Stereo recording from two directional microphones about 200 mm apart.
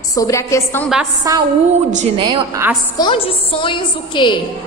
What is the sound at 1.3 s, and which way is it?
A woman's voice, 15° right (ahead or behind).